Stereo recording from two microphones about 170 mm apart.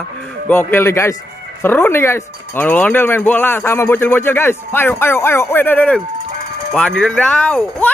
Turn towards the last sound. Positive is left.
turn(degrees=5)  # may be behind; listen again after turning